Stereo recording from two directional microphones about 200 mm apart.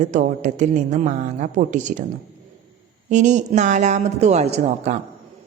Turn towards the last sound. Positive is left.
turn(degrees=-35)  # may be behind; listen again after turning